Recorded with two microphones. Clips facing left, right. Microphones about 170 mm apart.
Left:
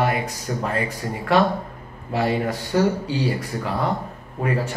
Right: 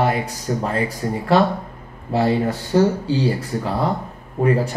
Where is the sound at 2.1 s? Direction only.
30° right (ahead or behind).